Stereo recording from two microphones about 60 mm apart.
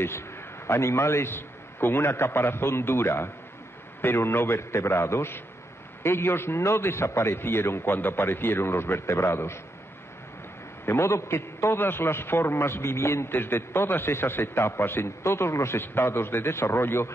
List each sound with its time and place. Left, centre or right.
0.7 s a man's voice: left
10.9 s a man's voice: left